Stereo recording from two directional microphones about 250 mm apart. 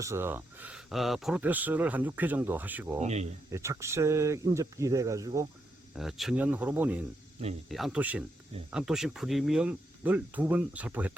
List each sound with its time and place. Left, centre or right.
0.0 s speech: centre
3.0 s speech: right
3.5 s speech: centre
5.9 s speech: centre